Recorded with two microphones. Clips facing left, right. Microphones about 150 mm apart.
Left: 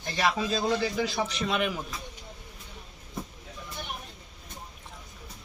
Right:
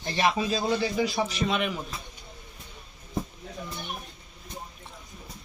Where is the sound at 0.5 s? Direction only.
5° right (ahead or behind).